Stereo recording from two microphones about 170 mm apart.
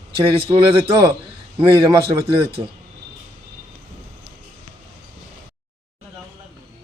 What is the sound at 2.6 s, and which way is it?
Speech, 40° right (ahead or behind).